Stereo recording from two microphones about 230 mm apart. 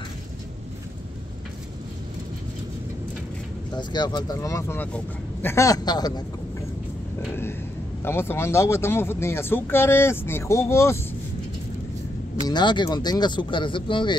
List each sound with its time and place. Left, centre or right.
3.7 s speech: centre
8.0 s speech: centre
12.4 s speech: centre